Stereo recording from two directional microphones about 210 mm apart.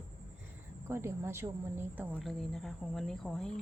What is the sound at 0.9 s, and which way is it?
Speech, 10° right (ahead or behind).